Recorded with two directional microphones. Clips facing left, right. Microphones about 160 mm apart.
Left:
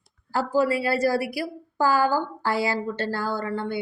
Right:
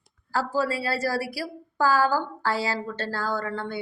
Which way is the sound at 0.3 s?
20° left (ahead or behind).